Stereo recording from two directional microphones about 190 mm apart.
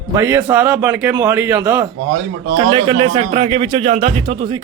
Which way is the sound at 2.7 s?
30° right (ahead or behind).